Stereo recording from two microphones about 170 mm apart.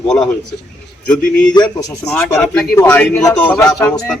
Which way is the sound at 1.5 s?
25° left (ahead or behind).